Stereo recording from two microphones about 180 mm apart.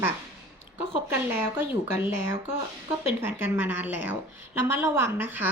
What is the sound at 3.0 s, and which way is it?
A woman's voice, 15° right (ahead or behind).